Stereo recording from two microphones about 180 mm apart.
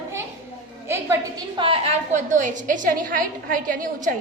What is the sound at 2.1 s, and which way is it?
A woman's voice, 45° right (ahead or behind).